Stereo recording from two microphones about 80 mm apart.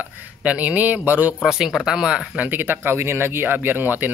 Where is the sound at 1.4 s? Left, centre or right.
Centre.